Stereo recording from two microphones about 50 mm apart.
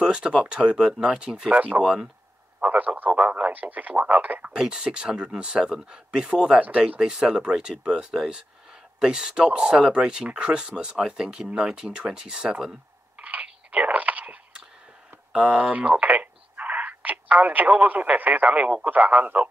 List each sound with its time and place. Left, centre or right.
0.0 s speech: centre
1.5 s speech: right
4.5 s speech: centre
13.2 s a sound: right
15.3 s speech: right
18.9 s speech: right